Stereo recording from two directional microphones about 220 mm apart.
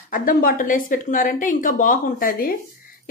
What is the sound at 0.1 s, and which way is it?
Speech, 40° left (ahead or behind).